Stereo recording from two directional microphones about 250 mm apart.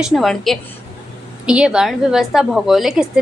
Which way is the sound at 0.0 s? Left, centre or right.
Centre.